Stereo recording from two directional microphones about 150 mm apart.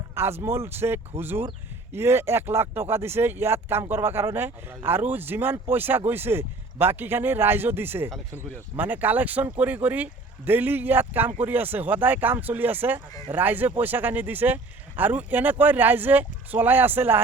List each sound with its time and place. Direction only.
0.1 s speech: 15° right (ahead or behind)